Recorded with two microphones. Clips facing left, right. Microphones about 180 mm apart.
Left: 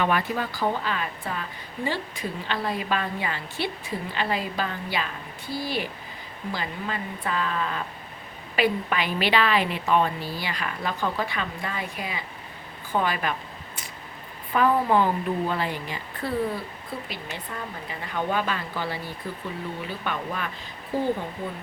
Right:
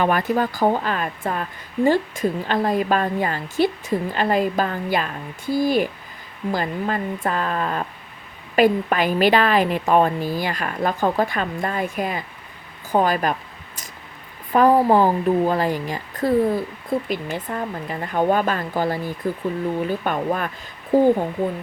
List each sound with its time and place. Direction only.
0.0 s a woman's voice: 45° right (ahead or behind)
14.5 s a woman's voice: 40° right (ahead or behind)